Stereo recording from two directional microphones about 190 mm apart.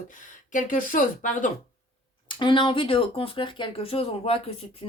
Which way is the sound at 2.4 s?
25° left (ahead or behind).